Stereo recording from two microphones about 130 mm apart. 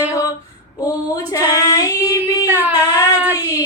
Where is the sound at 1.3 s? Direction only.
25° left (ahead or behind).